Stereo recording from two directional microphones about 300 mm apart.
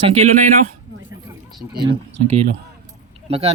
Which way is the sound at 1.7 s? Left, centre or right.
Centre.